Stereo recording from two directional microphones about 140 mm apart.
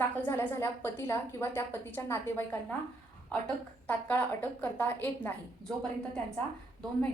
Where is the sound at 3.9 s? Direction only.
15° left (ahead or behind).